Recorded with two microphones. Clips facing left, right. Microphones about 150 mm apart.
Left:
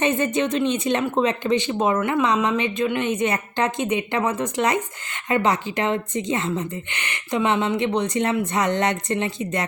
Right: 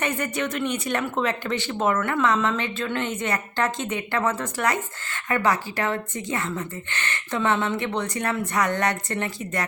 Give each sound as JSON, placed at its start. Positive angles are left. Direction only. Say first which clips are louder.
{"t": 0.0, "sound": "speech", "louder": "left 6 dB", "side_deg": 25}